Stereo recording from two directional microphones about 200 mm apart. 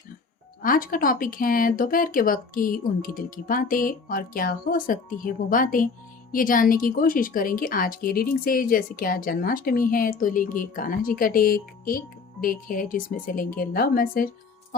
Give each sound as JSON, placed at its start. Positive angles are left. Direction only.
{"t": 0.6, "sound": "speech", "side_deg": 45}